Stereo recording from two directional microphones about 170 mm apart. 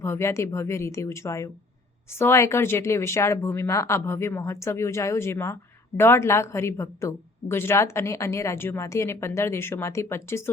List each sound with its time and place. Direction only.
0.0 s a woman's voice: 15° left (ahead or behind)